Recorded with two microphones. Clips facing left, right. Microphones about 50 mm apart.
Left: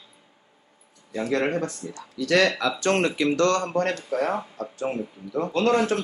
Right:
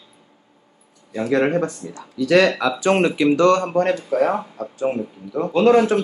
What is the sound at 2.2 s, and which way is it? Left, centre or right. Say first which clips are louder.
Speech: right 5 dB; centre.